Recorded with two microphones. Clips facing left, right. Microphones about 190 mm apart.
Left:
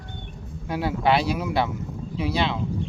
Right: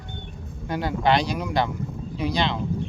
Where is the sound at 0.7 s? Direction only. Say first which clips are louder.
Even; 5° left (ahead or behind).